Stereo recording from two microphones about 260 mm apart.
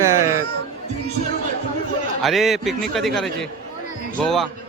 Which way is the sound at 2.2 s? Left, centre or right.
Centre.